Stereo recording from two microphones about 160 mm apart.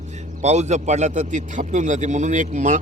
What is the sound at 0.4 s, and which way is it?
A man's voice, 45° right (ahead or behind).